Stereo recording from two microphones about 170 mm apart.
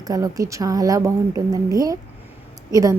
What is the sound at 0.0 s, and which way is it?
A woman's voice, 20° right (ahead or behind).